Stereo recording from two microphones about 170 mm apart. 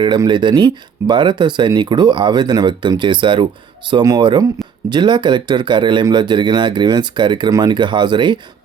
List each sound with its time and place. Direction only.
0.0 s speech: 25° right (ahead or behind)